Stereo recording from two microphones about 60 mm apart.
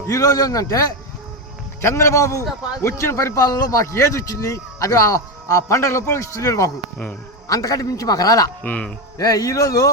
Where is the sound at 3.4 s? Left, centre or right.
Left.